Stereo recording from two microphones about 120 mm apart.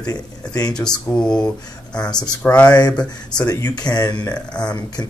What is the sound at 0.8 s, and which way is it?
Speech, 5° left (ahead or behind).